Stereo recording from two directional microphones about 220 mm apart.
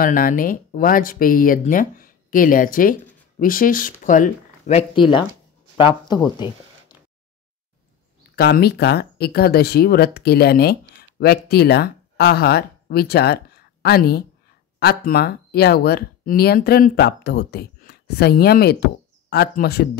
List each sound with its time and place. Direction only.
0.0 s speech: 40° left (ahead or behind); by 6.2 s 20° left (ahead or behind)
8.4 s speech: 45° left (ahead or behind)